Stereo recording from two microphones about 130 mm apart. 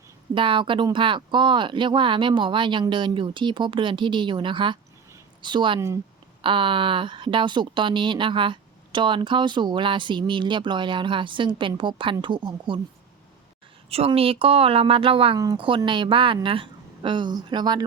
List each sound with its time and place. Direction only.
0.3 s a woman's voice: 40° right (ahead or behind)
14.1 s a woman's voice: 45° right (ahead or behind)